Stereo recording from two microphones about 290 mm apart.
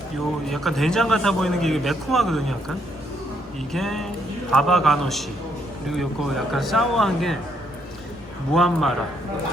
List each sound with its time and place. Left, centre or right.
0.4 s a man's voice: centre
8.5 s a man's voice: centre